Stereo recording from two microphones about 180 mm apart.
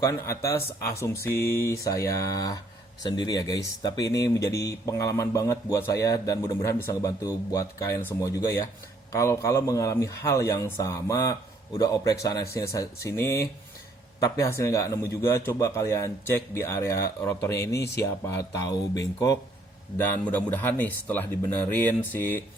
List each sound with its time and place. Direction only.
0.0 s speech: 15° left (ahead or behind)